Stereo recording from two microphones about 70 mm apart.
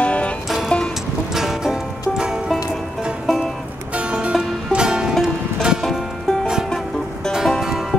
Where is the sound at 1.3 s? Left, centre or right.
Centre.